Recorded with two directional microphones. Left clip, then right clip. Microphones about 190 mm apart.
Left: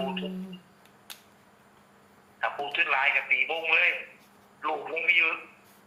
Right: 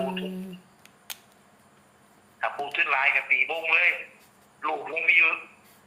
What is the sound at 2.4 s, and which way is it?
A man's voice, 15° right (ahead or behind).